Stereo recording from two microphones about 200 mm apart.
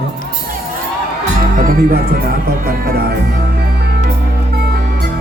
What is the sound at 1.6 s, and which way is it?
Speech, 45° right (ahead or behind).